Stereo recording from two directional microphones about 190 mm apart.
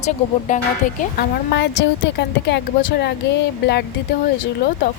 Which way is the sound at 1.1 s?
65° left (ahead or behind).